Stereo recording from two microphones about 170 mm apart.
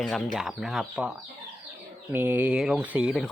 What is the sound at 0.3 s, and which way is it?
Speech, centre (ahead or behind).